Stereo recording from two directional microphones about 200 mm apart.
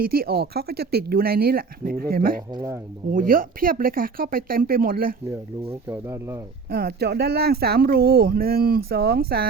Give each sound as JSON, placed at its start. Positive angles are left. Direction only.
{"t": 0.0, "sound": "speech", "side_deg": -50}
{"t": 2.5, "sound": "speech", "side_deg": -20}
{"t": 3.1, "sound": "speech", "side_deg": -45}
{"t": 5.9, "sound": "speech", "side_deg": -10}
{"t": 6.7, "sound": "speech", "side_deg": -50}